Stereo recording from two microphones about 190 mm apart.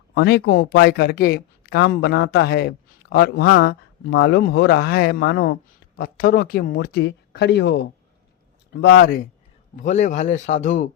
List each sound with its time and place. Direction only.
0.1 s speech: 60° left (ahead or behind)
3.7 s speech: 60° left (ahead or behind)
9.7 s a man's voice: 40° left (ahead or behind)